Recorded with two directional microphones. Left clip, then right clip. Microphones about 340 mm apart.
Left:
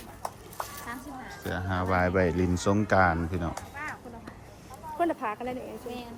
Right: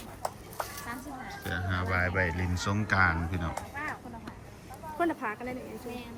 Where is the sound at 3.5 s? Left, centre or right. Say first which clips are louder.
Right 1 dB; right.